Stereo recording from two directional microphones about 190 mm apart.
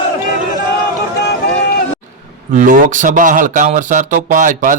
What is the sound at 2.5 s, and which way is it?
Speech, 45° right (ahead or behind).